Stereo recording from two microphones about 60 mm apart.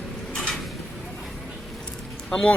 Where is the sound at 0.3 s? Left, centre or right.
Centre.